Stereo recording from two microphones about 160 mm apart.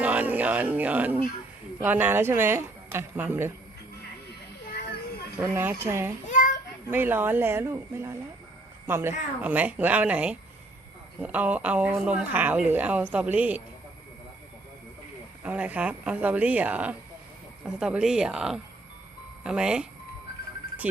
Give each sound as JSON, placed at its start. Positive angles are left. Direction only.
{"t": 0.0, "sound": "speech", "side_deg": -10}
{"t": 5.4, "sound": "speech", "side_deg": -15}
{"t": 6.2, "sound": "child singing", "side_deg": 50}
{"t": 6.9, "sound": "speech", "side_deg": -10}
{"t": 15.4, "sound": "speech", "side_deg": -10}